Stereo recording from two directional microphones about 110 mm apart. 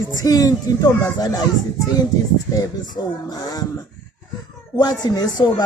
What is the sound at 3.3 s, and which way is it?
Speech, 35° left (ahead or behind).